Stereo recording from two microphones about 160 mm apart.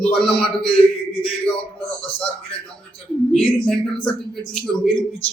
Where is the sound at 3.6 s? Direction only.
5° left (ahead or behind).